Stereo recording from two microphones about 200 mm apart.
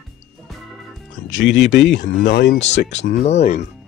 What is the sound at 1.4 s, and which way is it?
Speech, 60° left (ahead or behind).